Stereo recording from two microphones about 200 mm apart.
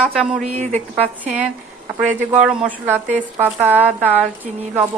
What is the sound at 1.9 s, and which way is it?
A woman's voice, 5° right (ahead or behind).